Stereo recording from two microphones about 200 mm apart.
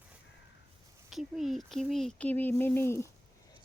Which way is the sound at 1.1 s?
Centre (ahead or behind).